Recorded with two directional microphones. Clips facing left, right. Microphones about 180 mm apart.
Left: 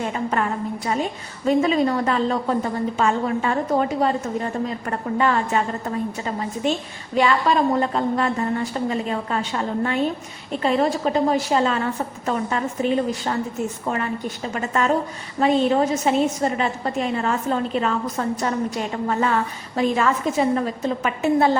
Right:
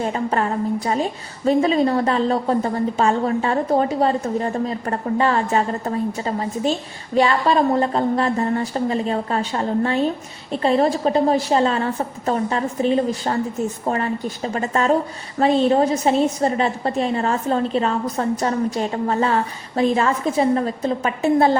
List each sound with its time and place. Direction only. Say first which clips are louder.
0.0 s a woman's voice: right 2 dB; 35° right (ahead or behind)
1.5 s a woman's voice: right 2 dB; 35° right (ahead or behind)